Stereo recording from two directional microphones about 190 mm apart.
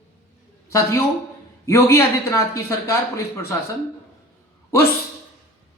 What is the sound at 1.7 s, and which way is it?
Speech, 15° left (ahead or behind).